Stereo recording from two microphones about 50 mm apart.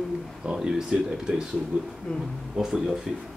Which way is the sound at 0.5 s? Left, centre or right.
Centre.